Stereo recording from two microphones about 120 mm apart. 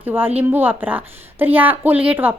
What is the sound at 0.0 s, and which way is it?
A woman's voice, 15° right (ahead or behind).